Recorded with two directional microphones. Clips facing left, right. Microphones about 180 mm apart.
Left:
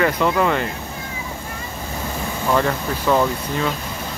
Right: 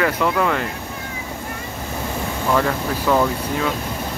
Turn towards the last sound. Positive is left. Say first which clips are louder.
# even
turn(degrees=0)  # may be behind; listen again after turning